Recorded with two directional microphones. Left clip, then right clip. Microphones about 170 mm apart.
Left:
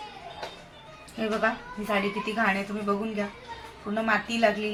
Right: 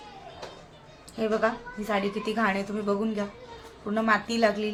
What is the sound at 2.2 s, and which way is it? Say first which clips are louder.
A woman's voice: left 1 dB; 40° right (ahead or behind).